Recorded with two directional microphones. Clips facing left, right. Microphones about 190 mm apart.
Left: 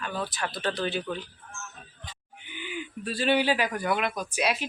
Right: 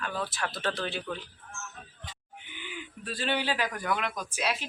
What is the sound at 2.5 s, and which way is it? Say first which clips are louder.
Speech: left 7 dB; 15° left (ahead or behind).